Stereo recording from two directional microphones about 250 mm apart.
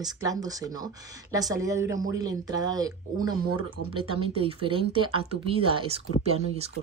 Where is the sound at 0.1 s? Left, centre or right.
Centre.